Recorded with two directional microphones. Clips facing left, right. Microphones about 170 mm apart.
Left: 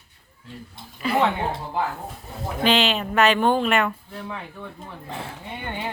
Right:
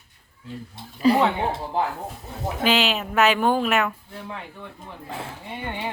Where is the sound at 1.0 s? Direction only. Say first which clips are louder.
Right 3 dB; 35° right (ahead or behind).